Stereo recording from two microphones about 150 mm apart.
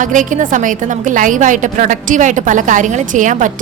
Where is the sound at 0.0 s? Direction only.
60° right (ahead or behind).